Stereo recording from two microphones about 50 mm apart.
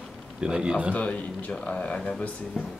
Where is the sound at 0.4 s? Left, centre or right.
Centre.